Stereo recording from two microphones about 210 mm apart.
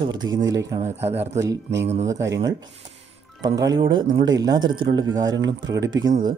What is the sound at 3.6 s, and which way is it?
Speech, 20° right (ahead or behind).